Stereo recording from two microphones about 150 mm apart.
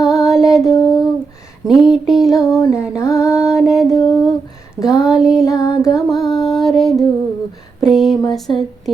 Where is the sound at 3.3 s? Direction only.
5° right (ahead or behind).